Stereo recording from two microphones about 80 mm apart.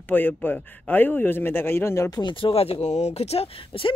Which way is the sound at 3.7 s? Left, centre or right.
Left.